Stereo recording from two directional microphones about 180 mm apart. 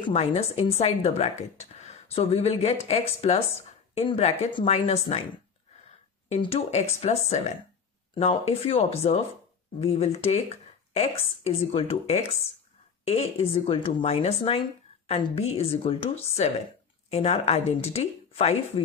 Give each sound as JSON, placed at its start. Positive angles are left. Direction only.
{"t": 0.0, "sound": "a woman's voice", "side_deg": 35}
{"t": 6.2, "sound": "a woman's voice", "side_deg": 35}